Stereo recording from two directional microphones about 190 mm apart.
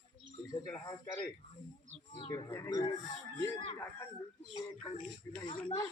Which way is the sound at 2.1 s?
25° left (ahead or behind).